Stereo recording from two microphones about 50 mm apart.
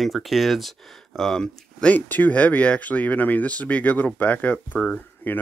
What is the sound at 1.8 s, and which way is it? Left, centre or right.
Speech, left.